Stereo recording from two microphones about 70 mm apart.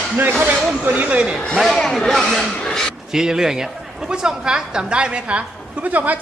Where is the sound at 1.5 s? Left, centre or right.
Centre.